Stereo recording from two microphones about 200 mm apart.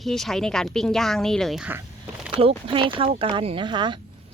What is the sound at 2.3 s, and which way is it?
Speech, 30° right (ahead or behind).